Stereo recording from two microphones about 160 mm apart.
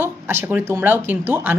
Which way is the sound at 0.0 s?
15° right (ahead or behind).